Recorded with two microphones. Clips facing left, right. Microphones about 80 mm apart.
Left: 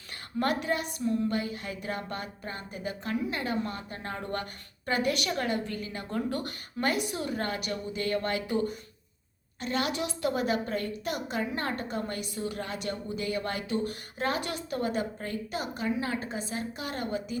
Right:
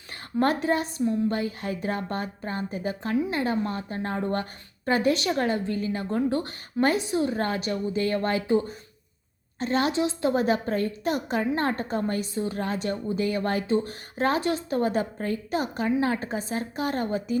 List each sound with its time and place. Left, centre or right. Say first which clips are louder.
0.3 s a woman's voice: right 5 dB; right